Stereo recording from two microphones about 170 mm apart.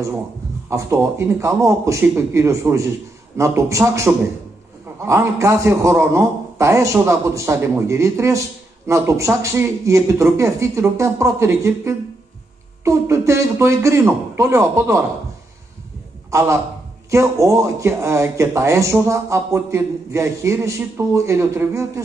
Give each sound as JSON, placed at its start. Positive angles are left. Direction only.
{"t": 0.7, "sound": "a man's voice", "side_deg": -15}
{"t": 16.3, "sound": "a man's voice", "side_deg": -15}